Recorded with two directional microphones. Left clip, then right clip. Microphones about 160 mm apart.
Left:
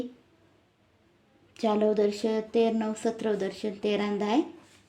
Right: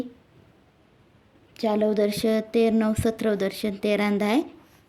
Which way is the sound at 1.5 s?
30° right (ahead or behind).